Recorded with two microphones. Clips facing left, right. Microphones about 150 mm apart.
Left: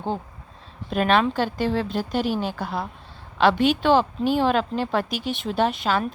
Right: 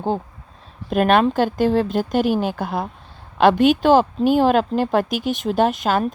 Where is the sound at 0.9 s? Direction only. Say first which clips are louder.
Right 4 dB; 50° right (ahead or behind).